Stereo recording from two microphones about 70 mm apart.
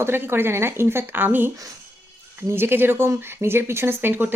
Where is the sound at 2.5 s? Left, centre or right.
Right.